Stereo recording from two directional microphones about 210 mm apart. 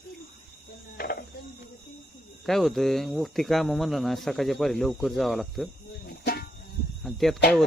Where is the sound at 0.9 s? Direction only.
45° left (ahead or behind).